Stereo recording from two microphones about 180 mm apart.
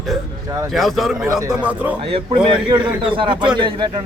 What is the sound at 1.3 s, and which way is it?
Speech, 20° right (ahead or behind).